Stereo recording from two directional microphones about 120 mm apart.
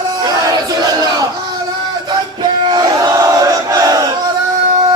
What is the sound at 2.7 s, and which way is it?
Battle cry, 35° right (ahead or behind).